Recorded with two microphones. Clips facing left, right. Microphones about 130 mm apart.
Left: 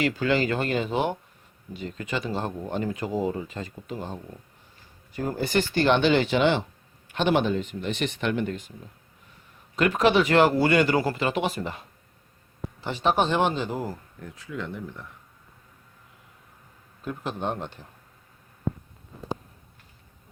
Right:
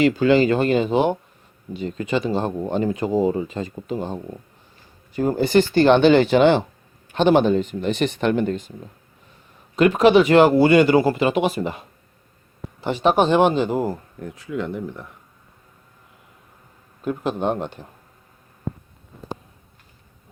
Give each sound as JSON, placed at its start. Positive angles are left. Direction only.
{"t": 0.0, "sound": "speech", "side_deg": -20}
{"t": 5.3, "sound": "speech", "side_deg": -30}
{"t": 9.7, "sound": "speech", "side_deg": -20}
{"t": 17.0, "sound": "a man's voice", "side_deg": -15}